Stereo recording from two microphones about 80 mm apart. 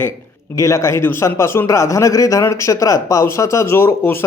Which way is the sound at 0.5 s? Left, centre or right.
Left.